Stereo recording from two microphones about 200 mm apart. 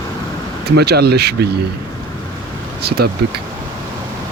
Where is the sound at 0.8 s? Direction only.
55° right (ahead or behind).